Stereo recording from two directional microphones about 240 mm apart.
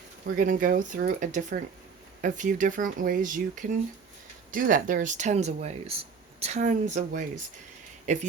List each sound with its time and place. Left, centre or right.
0.3 s speech: right